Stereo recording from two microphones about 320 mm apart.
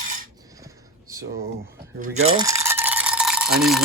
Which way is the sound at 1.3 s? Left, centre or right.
Centre.